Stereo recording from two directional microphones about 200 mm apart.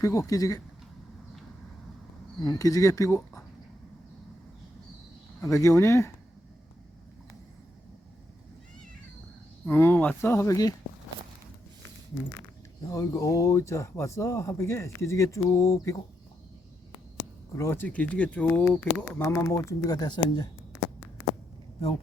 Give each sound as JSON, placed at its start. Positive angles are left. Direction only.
{"t": 0.0, "sound": "speech", "side_deg": 15}
{"t": 2.4, "sound": "speech", "side_deg": 20}
{"t": 5.5, "sound": "speech", "side_deg": 15}
{"t": 9.6, "sound": "speech", "side_deg": 10}
{"t": 12.9, "sound": "speech", "side_deg": 15}
{"t": 17.6, "sound": "speech", "side_deg": 10}